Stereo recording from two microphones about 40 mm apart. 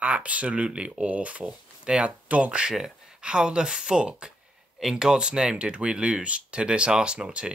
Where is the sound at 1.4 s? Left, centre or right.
Right.